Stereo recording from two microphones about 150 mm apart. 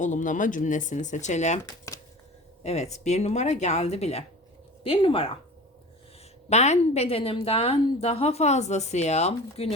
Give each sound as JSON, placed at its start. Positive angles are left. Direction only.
{"t": 0.0, "sound": "speech", "side_deg": 55}
{"t": 1.6, "sound": "shuffling cards", "side_deg": 25}
{"t": 2.6, "sound": "a woman's voice", "side_deg": 45}
{"t": 6.5, "sound": "a woman's voice", "side_deg": 50}